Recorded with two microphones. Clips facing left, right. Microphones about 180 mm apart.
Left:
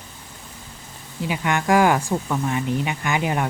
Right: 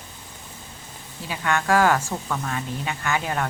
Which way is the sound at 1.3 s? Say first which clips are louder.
Left 2 dB; 15° left (ahead or behind).